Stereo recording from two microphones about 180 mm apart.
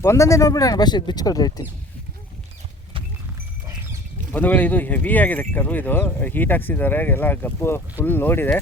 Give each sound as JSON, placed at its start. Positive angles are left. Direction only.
{"t": 0.0, "sound": "speech", "side_deg": 15}
{"t": 4.3, "sound": "speech", "side_deg": 10}